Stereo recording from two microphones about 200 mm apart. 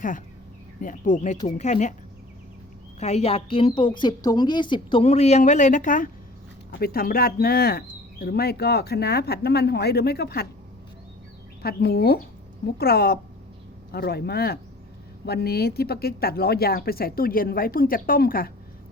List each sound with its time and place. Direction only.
0.8 s speech: 40° left (ahead or behind)
3.0 s a woman's voice: 30° left (ahead or behind); by 10.4 s 55° left (ahead or behind)
11.6 s speech: 50° left (ahead or behind)